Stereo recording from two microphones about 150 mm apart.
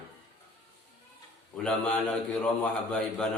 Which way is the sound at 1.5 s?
5° left (ahead or behind).